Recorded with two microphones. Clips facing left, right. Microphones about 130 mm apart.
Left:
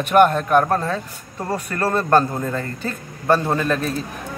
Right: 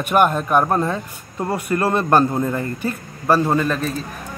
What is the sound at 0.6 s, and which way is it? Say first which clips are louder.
A man's voice: right 1 dB; 20° right (ahead or behind).